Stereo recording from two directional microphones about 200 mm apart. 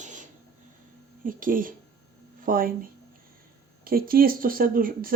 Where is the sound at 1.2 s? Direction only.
45° right (ahead or behind).